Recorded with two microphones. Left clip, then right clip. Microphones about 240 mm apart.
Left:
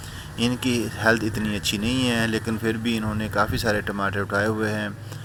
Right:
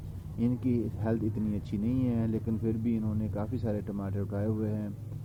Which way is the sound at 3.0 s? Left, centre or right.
Left.